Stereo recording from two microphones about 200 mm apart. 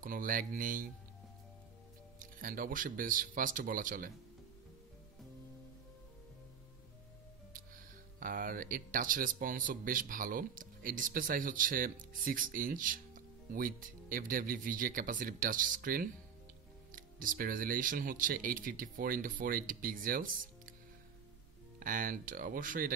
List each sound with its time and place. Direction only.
0.0 s speech: 45° right (ahead or behind)
2.1 s speech: 45° right (ahead or behind)
8.2 s speech: 45° right (ahead or behind)
21.7 s speech: 45° right (ahead or behind)